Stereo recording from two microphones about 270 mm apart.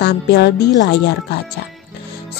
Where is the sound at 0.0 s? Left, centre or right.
Left.